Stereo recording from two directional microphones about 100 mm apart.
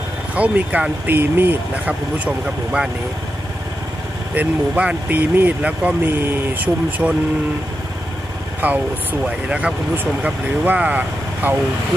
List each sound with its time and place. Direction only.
0.3 s speech: 15° right (ahead or behind)
4.4 s speech: 15° right (ahead or behind)
6.0 s speech: 25° right (ahead or behind)
8.5 s speech: 15° right (ahead or behind)